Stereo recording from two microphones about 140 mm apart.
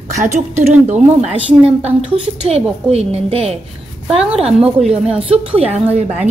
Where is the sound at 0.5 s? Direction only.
10° right (ahead or behind).